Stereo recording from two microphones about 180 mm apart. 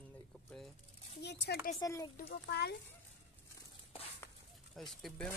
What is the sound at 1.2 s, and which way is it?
Speech, 65° left (ahead or behind).